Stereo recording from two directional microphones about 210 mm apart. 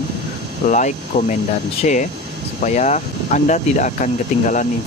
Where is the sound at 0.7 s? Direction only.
35° left (ahead or behind).